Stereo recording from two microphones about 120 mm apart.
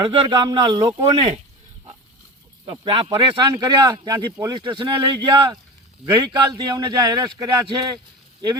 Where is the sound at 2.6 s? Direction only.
45° right (ahead or behind).